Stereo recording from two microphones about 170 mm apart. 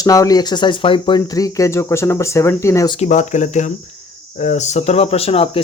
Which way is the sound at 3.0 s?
45° left (ahead or behind).